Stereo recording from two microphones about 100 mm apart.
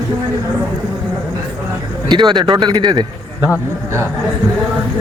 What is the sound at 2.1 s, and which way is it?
Speech, 50° right (ahead or behind).